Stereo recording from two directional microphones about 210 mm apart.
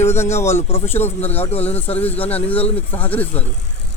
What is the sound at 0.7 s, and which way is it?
Speech, 25° left (ahead or behind).